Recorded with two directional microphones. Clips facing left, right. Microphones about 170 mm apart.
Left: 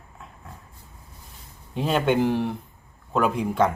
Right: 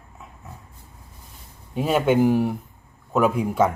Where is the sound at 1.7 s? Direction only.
5° right (ahead or behind).